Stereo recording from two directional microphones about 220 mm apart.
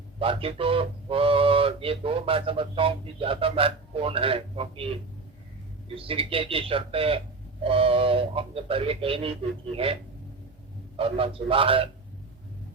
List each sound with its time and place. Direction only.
0.2 s speech: 25° right (ahead or behind)
6.0 s speech: 25° right (ahead or behind)